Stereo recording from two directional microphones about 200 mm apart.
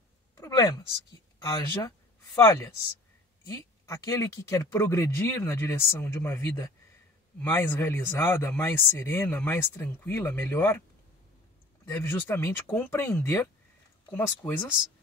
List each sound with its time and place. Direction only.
0.4 s a sound: 20° left (ahead or behind)
1.4 s speech: 15° left (ahead or behind)
11.8 s speech: 10° left (ahead or behind)